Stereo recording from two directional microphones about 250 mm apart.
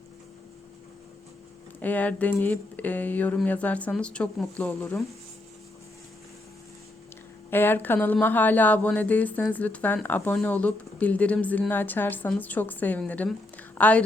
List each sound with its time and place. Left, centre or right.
1.8 s speech: centre
7.5 s speech: centre